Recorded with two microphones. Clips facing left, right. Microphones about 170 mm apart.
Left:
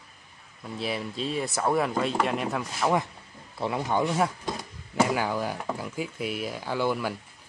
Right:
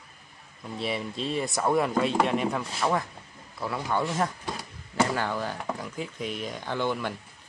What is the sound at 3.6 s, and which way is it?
Speech, 20° left (ahead or behind).